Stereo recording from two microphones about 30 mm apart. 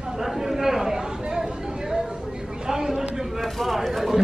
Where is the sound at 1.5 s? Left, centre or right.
Right.